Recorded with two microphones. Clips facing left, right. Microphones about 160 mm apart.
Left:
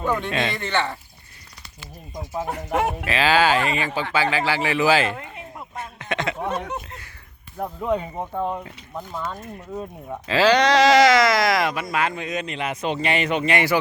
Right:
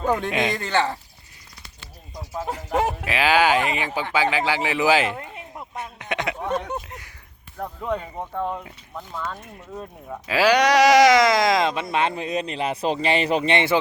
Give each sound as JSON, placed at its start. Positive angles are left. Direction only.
{"t": 0.1, "sound": "speech", "side_deg": -15}
{"t": 0.5, "sound": "speech", "side_deg": -40}
{"t": 2.3, "sound": "speech", "side_deg": 0}
{"t": 3.1, "sound": "speech", "side_deg": -15}
{"t": 5.7, "sound": "a sound", "side_deg": -15}
{"t": 6.4, "sound": "speech", "side_deg": 5}
{"t": 6.8, "sound": "speech", "side_deg": -15}
{"t": 7.6, "sound": "speech", "side_deg": 10}
{"t": 10.2, "sound": "speech", "side_deg": -10}